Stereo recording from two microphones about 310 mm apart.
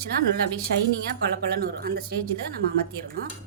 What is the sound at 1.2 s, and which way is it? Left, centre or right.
Speech, right.